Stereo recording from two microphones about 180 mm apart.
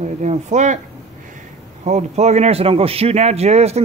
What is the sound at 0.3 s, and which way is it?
Speech, 40° right (ahead or behind).